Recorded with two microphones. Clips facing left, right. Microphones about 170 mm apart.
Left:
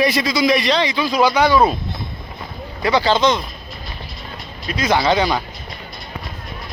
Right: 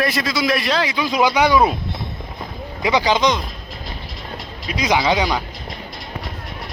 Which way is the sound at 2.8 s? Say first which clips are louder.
Left 1 dB; 15° right (ahead or behind).